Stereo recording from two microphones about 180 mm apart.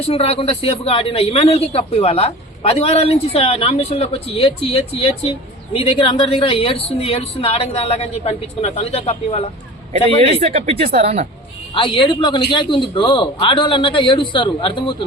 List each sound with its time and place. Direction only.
0.1 s a man's voice: 35° left (ahead or behind)
10.4 s speech: 35° right (ahead or behind)
11.7 s a man's voice: 30° left (ahead or behind)